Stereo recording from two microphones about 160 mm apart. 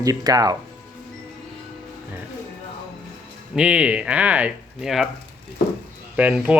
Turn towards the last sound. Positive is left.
turn(degrees=-10)  # may be behind; listen again after turning